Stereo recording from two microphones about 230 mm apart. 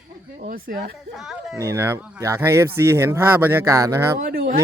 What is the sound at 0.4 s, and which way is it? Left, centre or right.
Speech, right.